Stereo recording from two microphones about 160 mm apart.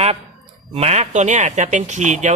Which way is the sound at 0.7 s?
40° right (ahead or behind).